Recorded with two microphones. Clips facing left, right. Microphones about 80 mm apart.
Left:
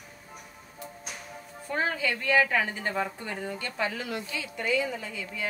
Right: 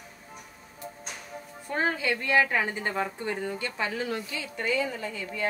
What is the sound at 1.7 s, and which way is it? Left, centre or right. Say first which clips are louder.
A woman's voice: right 1 dB; right.